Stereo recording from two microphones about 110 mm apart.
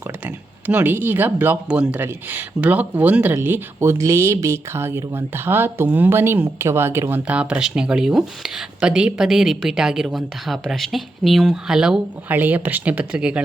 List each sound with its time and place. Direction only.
0.7 s a woman's voice: 15° right (ahead or behind)